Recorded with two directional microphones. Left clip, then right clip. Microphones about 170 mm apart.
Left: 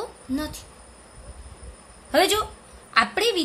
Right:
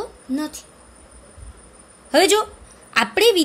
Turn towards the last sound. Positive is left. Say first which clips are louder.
# right 5 dB
turn(degrees=-30)  # may be behind; listen again after turning